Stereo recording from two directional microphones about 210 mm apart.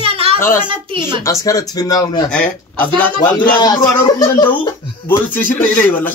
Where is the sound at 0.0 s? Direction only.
25° right (ahead or behind).